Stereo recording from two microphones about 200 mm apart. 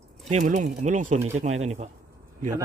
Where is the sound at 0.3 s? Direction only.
35° right (ahead or behind).